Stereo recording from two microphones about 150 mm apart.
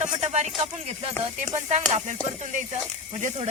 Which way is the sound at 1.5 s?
50° right (ahead or behind).